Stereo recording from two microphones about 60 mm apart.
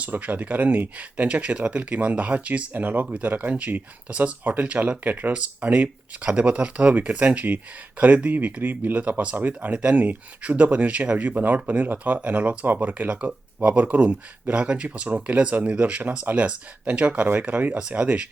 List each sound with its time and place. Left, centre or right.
0.0 s speech: right
9.7 s speech: centre
10.0 s speech: right